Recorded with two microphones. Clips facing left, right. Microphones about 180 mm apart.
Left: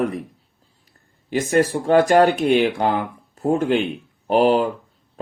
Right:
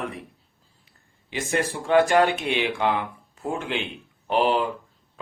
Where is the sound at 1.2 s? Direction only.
40° left (ahead or behind).